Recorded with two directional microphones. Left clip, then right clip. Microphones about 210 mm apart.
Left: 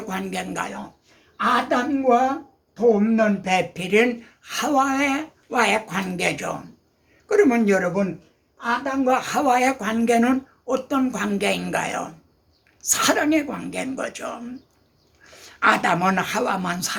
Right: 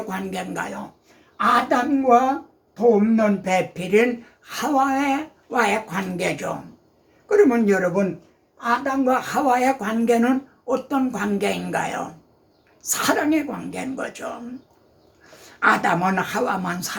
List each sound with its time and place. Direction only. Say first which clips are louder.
0.1 s speech: even; 15° left (ahead or behind)
1.4 s a woman's voice: right 2 dB; centre (ahead or behind)
9.0 s speech: left 1 dB; 15° left (ahead or behind)
15.4 s speech: even; 15° left (ahead or behind)